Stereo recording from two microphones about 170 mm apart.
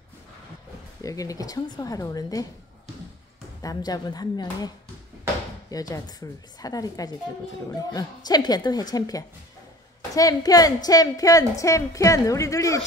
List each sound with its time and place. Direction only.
1.0 s speech: 20° left (ahead or behind)
3.6 s speech: 25° left (ahead or behind)